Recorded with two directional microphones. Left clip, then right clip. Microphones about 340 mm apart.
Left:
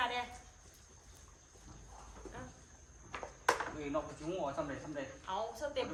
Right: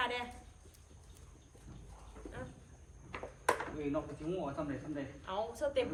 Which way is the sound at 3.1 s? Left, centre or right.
Centre.